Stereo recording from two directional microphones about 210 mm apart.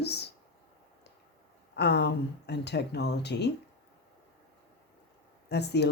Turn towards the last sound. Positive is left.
turn(degrees=55)  # may be behind; listen again after turning